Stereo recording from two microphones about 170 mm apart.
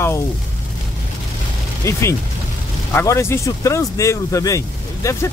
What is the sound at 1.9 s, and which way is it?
Speech, 15° left (ahead or behind).